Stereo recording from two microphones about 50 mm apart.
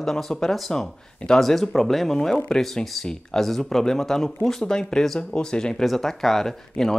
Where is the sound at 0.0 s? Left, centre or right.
Centre.